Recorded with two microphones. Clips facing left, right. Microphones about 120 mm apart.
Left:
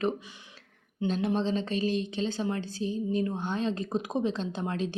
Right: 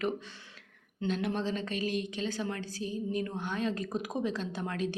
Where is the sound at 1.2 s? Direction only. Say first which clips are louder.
Left 4 dB; 30° left (ahead or behind).